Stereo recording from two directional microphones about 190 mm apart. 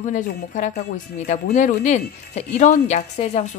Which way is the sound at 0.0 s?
40° left (ahead or behind).